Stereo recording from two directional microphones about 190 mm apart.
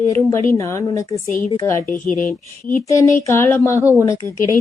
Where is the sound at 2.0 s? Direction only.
5° left (ahead or behind).